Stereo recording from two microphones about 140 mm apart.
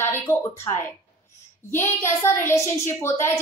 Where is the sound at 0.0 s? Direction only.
20° left (ahead or behind).